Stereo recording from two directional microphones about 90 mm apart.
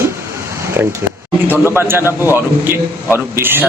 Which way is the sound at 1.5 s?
25° right (ahead or behind).